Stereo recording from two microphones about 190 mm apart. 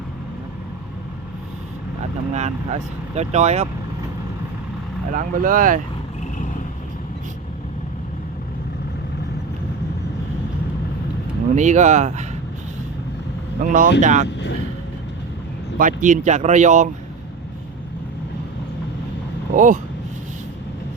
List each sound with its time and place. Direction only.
2.3 s speech: 35° right (ahead or behind)
5.1 s speech: 45° right (ahead or behind)
11.5 s speech: 40° right (ahead or behind)
13.6 s speech: 45° right (ahead or behind)
15.8 s speech: 45° right (ahead or behind)
19.5 s speech: 45° right (ahead or behind)